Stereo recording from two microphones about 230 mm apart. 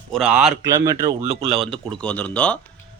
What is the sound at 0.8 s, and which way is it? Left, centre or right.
Speech, centre.